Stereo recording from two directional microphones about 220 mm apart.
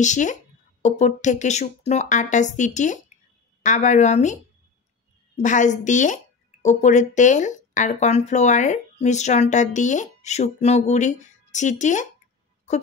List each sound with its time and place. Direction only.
0.0 s speech: 35° left (ahead or behind)
5.4 s speech: 35° left (ahead or behind)